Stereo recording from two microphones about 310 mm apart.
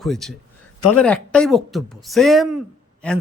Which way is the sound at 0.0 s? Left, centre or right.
Centre.